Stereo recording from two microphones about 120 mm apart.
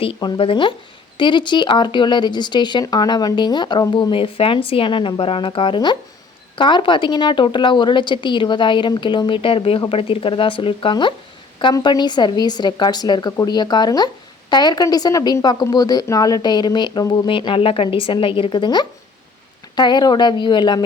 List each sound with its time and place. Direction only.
0.0 s speech: 50° left (ahead or behind)